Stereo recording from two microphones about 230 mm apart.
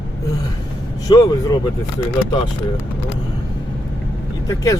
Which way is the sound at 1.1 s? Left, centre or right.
Centre.